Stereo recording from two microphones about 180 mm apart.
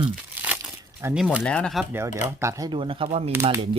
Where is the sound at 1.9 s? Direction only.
15° right (ahead or behind); by 3.3 s 35° right (ahead or behind).